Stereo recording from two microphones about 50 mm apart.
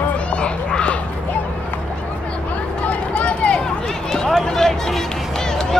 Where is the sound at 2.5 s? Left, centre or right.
Left.